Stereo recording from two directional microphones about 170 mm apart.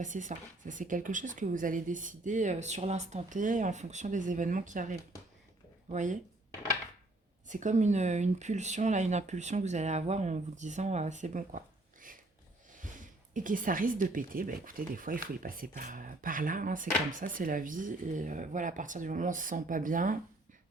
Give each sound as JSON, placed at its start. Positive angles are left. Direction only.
{"t": 0.0, "sound": "speech", "side_deg": -50}
{"t": 7.4, "sound": "speech", "side_deg": -45}